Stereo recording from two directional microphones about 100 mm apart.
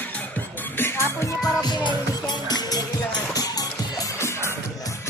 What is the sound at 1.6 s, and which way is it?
Music, 45° left (ahead or behind).